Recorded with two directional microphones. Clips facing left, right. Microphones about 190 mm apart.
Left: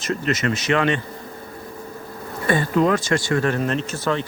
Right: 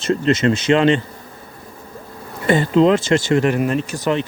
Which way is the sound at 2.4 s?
20° right (ahead or behind).